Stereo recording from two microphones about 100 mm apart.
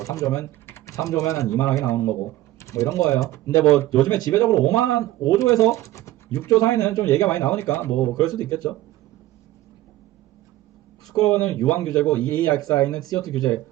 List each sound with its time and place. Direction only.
0.0 s speech: 35° left (ahead or behind)
8.4 s speech: 35° left (ahead or behind)
11.1 s speech: 35° left (ahead or behind)